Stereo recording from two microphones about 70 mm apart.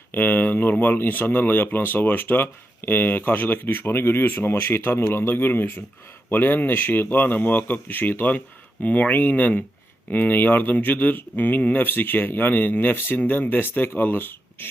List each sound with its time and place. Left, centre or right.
0.1 s speech: left